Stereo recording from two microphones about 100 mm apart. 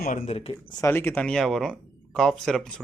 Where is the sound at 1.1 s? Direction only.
5° left (ahead or behind).